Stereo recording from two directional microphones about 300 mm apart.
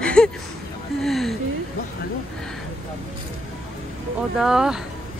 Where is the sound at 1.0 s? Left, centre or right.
Centre.